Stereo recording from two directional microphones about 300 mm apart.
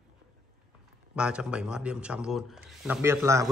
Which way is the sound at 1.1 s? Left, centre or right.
Centre.